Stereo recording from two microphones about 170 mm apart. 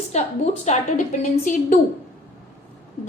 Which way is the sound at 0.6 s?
45° left (ahead or behind).